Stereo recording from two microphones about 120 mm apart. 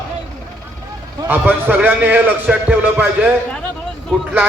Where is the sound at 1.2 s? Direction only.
15° right (ahead or behind).